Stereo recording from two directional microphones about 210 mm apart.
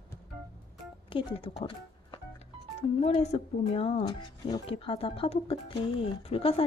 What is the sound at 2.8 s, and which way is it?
Speech, 30° left (ahead or behind).